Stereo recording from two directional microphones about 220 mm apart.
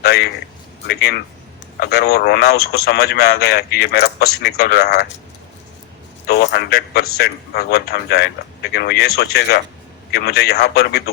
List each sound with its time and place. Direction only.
0.0 s a sound: 45° left (ahead or behind)
0.9 s speech: 45° left (ahead or behind)
6.2 s speech: 50° left (ahead or behind)